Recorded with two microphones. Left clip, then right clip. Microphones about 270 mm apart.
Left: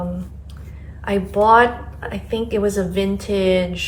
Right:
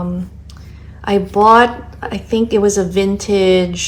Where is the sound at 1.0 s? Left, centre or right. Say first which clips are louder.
Right 5 dB; right.